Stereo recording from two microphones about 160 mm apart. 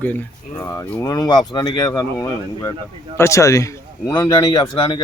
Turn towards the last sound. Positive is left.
turn(degrees=30)  # may be behind; listen again after turning